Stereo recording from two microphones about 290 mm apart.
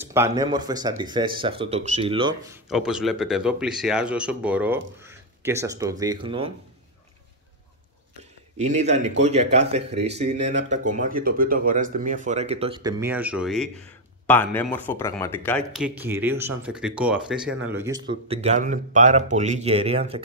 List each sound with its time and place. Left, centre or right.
0.0 s speech: centre
2.7 s speech: centre
8.2 s a sound: right
9.2 s speech: right
18.1 s speech: right